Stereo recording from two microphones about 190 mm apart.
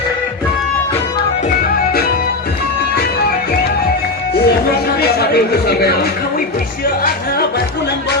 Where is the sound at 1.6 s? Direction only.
55° left (ahead or behind).